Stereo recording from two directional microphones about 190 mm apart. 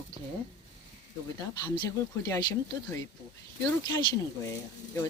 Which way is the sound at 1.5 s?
20° left (ahead or behind).